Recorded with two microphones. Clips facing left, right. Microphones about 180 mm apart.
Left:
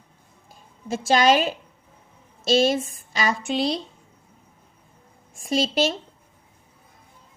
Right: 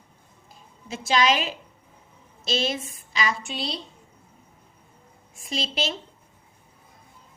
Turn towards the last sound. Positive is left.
turn(degrees=45)  # may be behind; listen again after turning